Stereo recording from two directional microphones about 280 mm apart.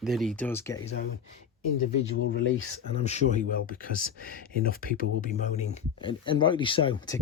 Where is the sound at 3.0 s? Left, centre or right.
Left.